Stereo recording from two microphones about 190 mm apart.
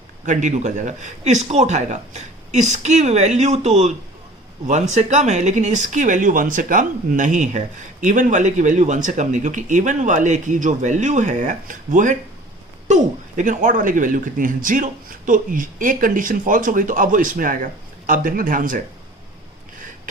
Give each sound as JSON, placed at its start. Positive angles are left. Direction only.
{"t": 0.3, "sound": "speech", "side_deg": -40}
{"t": 4.9, "sound": "speech", "side_deg": -35}